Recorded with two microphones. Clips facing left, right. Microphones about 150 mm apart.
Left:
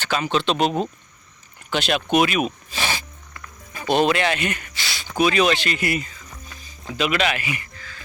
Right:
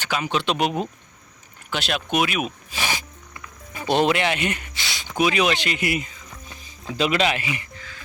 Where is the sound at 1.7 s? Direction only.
Centre (ahead or behind); by 5.0 s 20° right (ahead or behind).